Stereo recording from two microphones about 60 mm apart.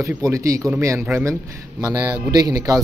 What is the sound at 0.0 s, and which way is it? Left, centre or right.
Speech, right.